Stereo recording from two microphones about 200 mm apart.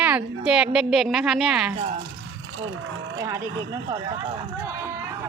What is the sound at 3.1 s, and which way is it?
Speech, 15° right (ahead or behind).